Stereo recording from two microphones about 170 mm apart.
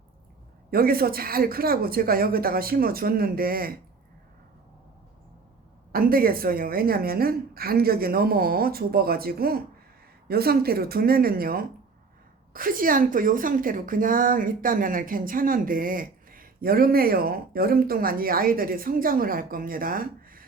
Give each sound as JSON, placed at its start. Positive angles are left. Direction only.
{"t": 0.7, "sound": "a woman's voice", "side_deg": -60}
{"t": 5.9, "sound": "a woman's voice", "side_deg": -60}